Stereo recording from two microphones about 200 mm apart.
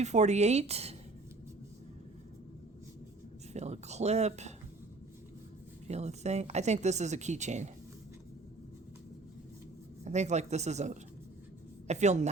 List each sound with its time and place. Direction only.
0.0 s speech: 35° right (ahead or behind)
3.5 s speech: 35° right (ahead or behind)
5.9 s speech: 35° right (ahead or behind)
10.0 s speech: 35° right (ahead or behind)